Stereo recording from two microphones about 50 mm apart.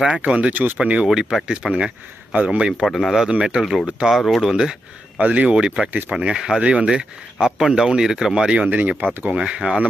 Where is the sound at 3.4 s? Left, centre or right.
Centre.